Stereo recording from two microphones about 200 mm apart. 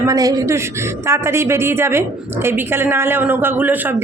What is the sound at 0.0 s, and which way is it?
A woman's voice, 15° right (ahead or behind).